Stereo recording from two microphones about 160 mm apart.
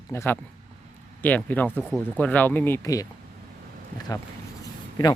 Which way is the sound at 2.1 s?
10° left (ahead or behind).